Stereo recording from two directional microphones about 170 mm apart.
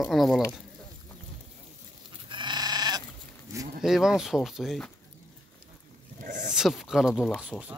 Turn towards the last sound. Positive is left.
turn(degrees=0)  # may be behind; listen again after turning